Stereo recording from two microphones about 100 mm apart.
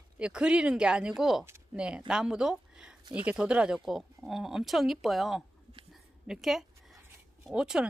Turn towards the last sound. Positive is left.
turn(degrees=-5)  # may be behind; listen again after turning